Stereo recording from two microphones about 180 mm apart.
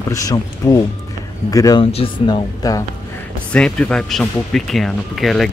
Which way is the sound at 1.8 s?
30° left (ahead or behind).